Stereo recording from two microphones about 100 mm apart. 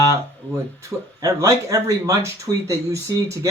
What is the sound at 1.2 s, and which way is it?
Speech, 35° right (ahead or behind).